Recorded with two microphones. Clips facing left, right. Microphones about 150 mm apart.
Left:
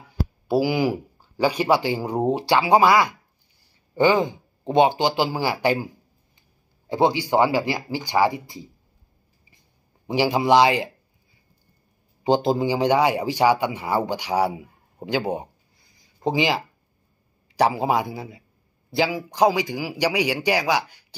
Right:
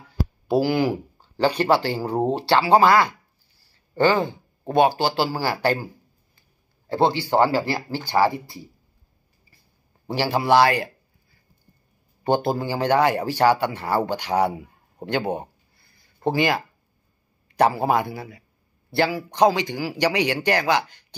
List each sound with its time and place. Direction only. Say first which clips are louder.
0.0 s a sound: right 1 dB; 10° left (ahead or behind)
2.0 s a man's voice: right 1 dB; 15° left (ahead or behind)
6.9 s a man's voice: even; 15° left (ahead or behind)
10.0 s a man's voice: left 2 dB; 15° left (ahead or behind)
12.2 s a man's voice: left 2 dB; 15° left (ahead or behind)
15.0 s a sound: even; 10° left (ahead or behind)
17.6 s a man's voice: even; 10° left (ahead or behind)